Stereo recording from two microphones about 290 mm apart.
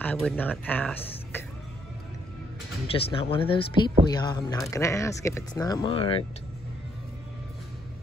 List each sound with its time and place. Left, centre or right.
0.0 s speech: centre
2.9 s speech: centre